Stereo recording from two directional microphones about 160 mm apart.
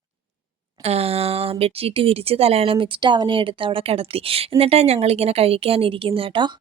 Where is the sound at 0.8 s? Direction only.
40° right (ahead or behind).